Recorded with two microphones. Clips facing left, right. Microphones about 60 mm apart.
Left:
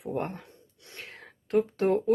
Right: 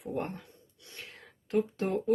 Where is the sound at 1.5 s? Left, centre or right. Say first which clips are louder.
Left 5 dB; left.